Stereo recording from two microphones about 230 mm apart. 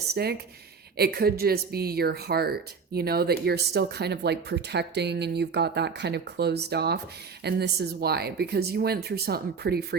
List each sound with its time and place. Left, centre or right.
0.1 s speech: right